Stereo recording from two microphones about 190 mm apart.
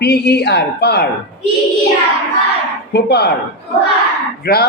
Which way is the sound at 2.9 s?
60° left (ahead or behind).